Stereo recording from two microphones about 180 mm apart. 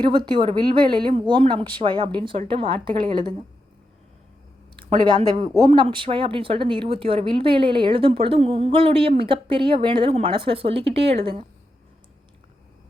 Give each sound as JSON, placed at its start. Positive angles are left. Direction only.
{"t": 0.0, "sound": "a woman's voice", "side_deg": -25}
{"t": 4.8, "sound": "a woman's voice", "side_deg": -25}